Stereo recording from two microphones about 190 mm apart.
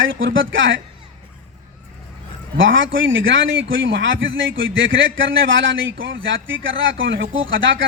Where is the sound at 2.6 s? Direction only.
85° right.